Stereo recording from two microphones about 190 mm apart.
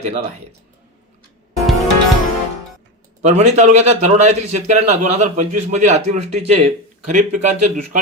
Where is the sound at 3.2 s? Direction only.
35° right (ahead or behind).